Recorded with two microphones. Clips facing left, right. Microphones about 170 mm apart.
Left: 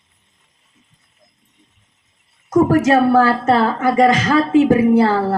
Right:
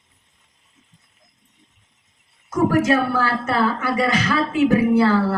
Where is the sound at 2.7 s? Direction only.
40° left (ahead or behind).